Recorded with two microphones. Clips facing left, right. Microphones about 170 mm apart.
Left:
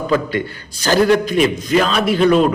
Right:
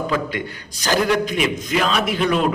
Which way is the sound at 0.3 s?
15° right (ahead or behind).